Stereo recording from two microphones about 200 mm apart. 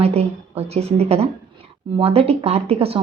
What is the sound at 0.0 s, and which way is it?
A woman's voice, 30° right (ahead or behind).